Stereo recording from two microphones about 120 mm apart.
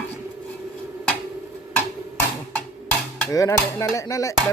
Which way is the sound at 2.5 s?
10° left (ahead or behind).